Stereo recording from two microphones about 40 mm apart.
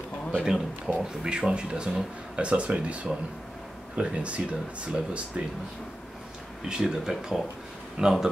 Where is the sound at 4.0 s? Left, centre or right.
Right.